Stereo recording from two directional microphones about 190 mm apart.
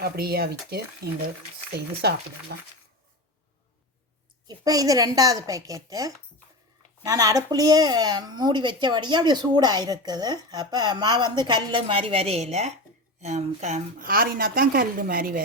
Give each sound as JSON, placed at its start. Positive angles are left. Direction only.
{"t": 0.0, "sound": "a woman's voice", "side_deg": -55}
{"t": 4.4, "sound": "a woman's voice", "side_deg": -20}